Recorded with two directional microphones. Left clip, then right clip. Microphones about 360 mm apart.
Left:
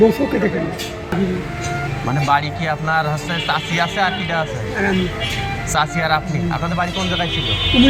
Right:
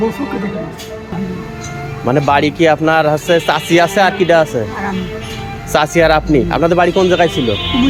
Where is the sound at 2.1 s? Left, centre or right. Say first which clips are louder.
Right 6 dB; right.